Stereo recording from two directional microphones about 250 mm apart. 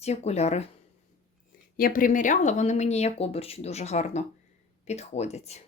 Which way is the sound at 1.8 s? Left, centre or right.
Left.